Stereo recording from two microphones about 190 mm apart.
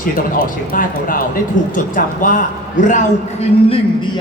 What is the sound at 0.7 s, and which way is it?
A man's voice, 45° left (ahead or behind).